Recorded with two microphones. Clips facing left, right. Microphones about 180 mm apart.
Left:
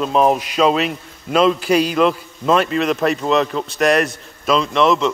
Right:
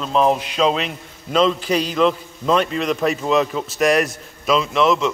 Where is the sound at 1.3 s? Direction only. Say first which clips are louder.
Left 2 dB; 55° left (ahead or behind).